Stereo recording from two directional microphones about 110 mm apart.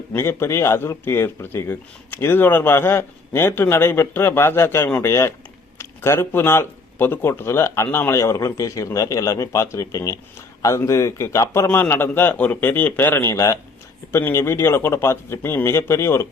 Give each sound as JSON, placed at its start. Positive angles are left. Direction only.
{"t": 0.1, "sound": "speech", "side_deg": 20}